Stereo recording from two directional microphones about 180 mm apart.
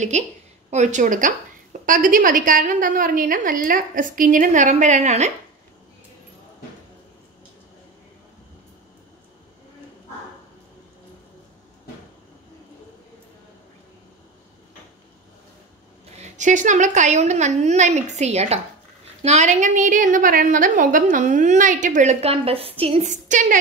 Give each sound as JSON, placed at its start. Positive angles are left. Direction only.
{"t": 0.1, "sound": "a woman's voice", "side_deg": -40}
{"t": 16.2, "sound": "a woman's voice", "side_deg": -45}